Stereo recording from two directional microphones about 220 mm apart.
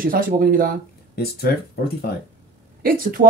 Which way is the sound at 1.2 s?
45° left (ahead or behind).